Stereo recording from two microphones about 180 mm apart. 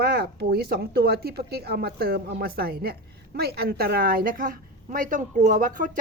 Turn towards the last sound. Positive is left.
turn(degrees=-50)  # may be behind; listen again after turning